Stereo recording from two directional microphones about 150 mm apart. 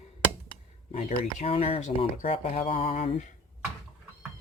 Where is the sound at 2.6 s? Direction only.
40° left (ahead or behind).